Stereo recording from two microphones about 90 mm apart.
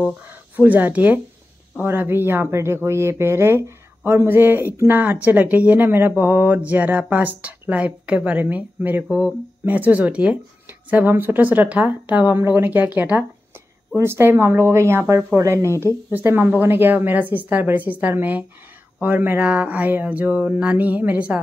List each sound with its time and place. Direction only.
0.3 s speech: 20° right (ahead or behind)
13.9 s speech: 30° right (ahead or behind)
15.8 s speech: 20° right (ahead or behind)